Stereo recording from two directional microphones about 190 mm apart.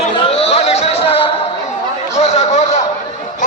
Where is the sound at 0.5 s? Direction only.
35° left (ahead or behind).